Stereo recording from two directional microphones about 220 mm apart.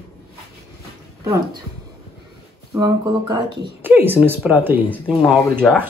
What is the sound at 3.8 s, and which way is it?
Speech, 10° right (ahead or behind).